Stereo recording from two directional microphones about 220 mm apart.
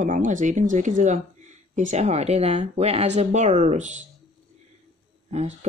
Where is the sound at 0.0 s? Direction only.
35° right (ahead or behind).